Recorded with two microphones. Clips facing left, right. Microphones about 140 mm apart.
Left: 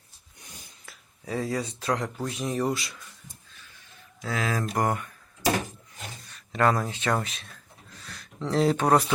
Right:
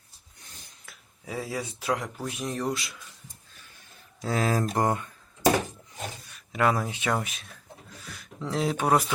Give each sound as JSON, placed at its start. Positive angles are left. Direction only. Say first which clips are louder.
{"t": 0.9, "sound": "speech", "louder": "left 4 dB", "side_deg": -5}
{"t": 4.2, "sound": "speech", "louder": "right 3 dB", "side_deg": -35}
{"t": 4.8, "sound": "speech", "louder": "right 1 dB", "side_deg": -25}
{"t": 6.3, "sound": "speech", "louder": "left 1 dB", "side_deg": -10}